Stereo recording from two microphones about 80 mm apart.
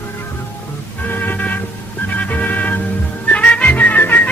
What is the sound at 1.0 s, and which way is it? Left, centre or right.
Music, left.